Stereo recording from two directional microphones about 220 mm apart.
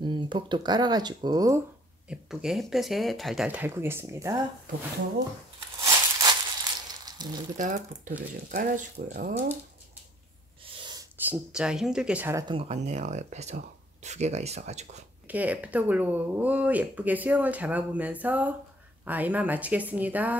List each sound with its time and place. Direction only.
0.0 s speech: 20° right (ahead or behind)
2.0 s speech: centre (ahead or behind)
5.8 s a sound: 15° right (ahead or behind)
7.5 s speech: 35° right (ahead or behind)
10.8 s a sound: 20° right (ahead or behind)
11.2 s speech: 5° right (ahead or behind)
12.5 s speech: 30° right (ahead or behind)
15.2 s speech: 5° right (ahead or behind)